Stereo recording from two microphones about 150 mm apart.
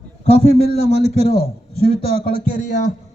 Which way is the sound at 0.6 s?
90° right.